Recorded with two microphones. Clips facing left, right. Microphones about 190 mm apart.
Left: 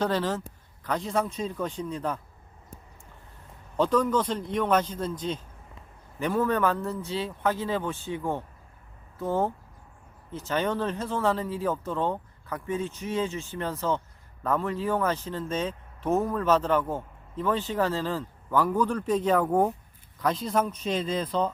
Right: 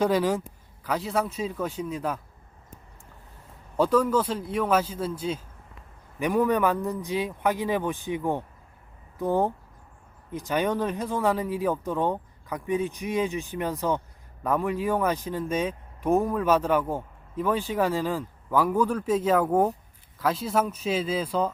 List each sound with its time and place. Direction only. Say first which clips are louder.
0.0 s speech: right 4 dB; 10° right (ahead or behind)
3.8 s speech: right 2 dB; 10° right (ahead or behind)